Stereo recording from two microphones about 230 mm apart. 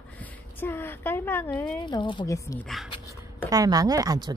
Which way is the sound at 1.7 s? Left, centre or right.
Centre.